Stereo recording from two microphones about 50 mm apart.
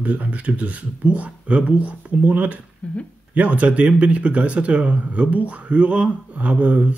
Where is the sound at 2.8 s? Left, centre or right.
Left.